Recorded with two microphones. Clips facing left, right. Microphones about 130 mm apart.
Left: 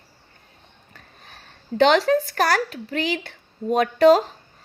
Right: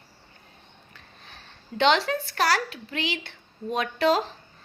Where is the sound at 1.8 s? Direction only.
40° left (ahead or behind).